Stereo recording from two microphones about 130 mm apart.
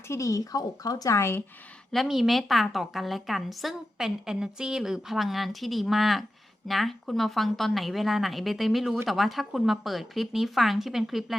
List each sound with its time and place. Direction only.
0.1 s speech: 25° left (ahead or behind)
1.9 s a woman's voice: centre (ahead or behind)